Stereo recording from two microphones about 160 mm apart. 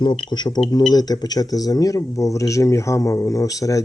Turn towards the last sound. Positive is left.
turn(degrees=20)  # may be behind; listen again after turning